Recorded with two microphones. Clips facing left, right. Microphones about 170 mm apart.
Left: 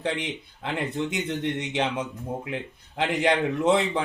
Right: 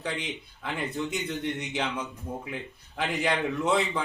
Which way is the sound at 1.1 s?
70° left (ahead or behind).